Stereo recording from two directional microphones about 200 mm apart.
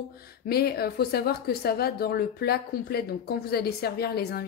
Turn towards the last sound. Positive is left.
turn(degrees=50)  # may be behind; listen again after turning